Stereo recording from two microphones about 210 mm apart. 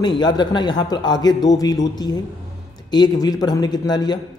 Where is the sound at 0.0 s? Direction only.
20° left (ahead or behind).